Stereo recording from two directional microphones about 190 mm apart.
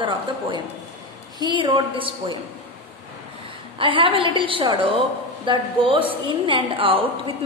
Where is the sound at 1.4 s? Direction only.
25° right (ahead or behind).